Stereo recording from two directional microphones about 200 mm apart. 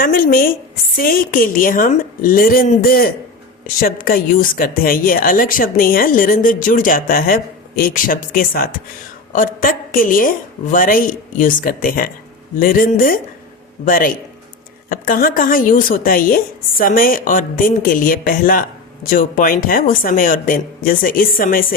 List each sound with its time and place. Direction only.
0.0 s a woman's voice: 45° left (ahead or behind)